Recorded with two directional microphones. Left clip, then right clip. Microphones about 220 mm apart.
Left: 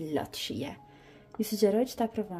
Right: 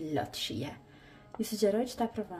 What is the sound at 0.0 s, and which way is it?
A woman's voice, 35° left (ahead or behind).